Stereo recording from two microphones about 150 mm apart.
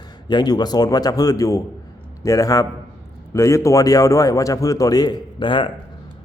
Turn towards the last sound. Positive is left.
turn(degrees=30)  # may be behind; listen again after turning